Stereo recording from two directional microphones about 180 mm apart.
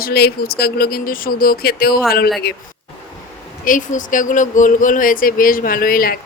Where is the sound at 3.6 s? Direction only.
45° left (ahead or behind).